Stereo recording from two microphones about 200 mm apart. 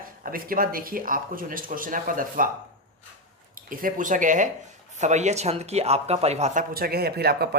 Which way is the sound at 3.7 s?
45° right (ahead or behind).